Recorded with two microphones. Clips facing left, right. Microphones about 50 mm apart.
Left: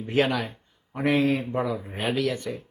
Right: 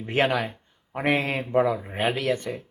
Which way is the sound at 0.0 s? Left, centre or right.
Right.